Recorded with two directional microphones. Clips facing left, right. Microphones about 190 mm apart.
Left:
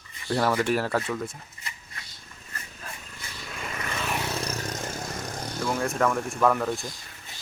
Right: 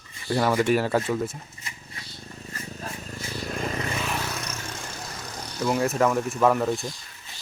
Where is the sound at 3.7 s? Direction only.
20° right (ahead or behind).